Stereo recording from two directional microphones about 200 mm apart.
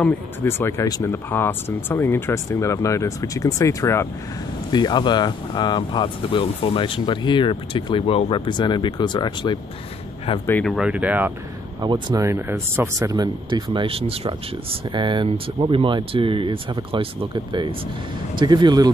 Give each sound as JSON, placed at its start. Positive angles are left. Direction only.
{"t": 0.0, "sound": "speech", "side_deg": 10}
{"t": 10.4, "sound": "speech", "side_deg": 5}
{"t": 11.8, "sound": "speech", "side_deg": -20}